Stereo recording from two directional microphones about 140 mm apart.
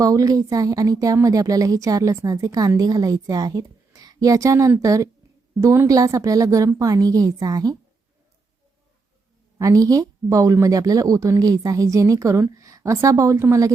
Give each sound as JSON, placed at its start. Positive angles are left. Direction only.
{"t": 0.0, "sound": "a woman's voice", "side_deg": -25}
{"t": 9.6, "sound": "a woman's voice", "side_deg": -25}